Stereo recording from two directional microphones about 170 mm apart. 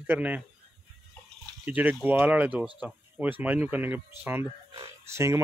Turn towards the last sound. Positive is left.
turn(degrees=-15)  # may be behind; listen again after turning